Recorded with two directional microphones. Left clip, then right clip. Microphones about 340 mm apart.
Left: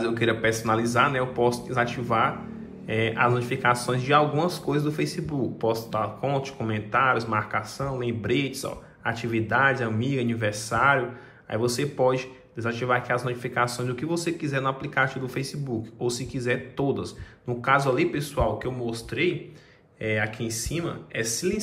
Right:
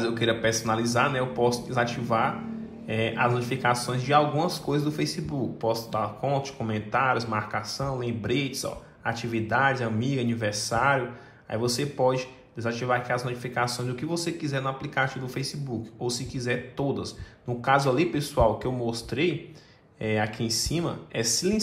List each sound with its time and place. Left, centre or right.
0.0 s speech: centre